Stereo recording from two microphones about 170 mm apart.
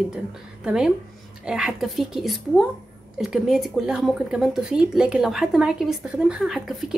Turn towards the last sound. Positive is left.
turn(degrees=0)  # may be behind; listen again after turning